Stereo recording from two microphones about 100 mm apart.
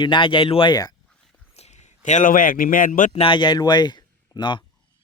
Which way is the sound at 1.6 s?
90° left.